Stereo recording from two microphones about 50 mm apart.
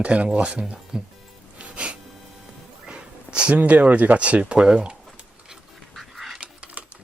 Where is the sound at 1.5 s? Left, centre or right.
Right.